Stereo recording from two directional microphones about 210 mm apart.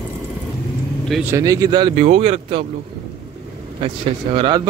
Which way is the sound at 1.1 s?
Centre (ahead or behind).